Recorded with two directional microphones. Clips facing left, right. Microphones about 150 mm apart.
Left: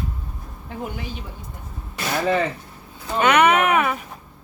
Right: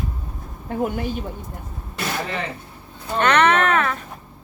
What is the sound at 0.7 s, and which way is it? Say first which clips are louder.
Speech: right 8 dB; 50° right (ahead or behind).